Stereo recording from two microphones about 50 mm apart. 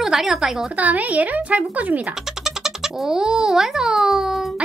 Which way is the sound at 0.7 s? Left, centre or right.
Right.